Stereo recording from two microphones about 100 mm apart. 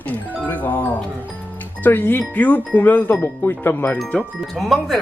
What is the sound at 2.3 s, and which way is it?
Speech, 15° left (ahead or behind).